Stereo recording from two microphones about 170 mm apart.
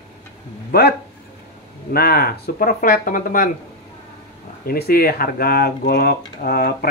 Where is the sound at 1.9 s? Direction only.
65° left (ahead or behind).